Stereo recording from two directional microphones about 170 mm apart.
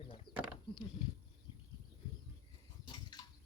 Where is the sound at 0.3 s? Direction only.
60° left (ahead or behind).